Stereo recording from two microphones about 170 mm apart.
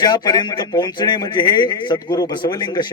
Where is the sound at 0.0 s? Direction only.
25° left (ahead or behind).